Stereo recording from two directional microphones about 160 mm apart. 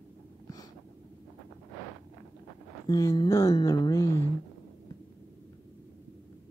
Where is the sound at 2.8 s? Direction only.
20° left (ahead or behind).